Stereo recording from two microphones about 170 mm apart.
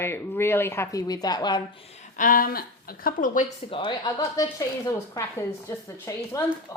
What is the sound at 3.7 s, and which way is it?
A woman's voice, 30° left (ahead or behind).